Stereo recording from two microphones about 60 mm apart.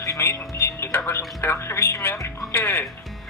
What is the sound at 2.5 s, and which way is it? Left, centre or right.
Speech, left.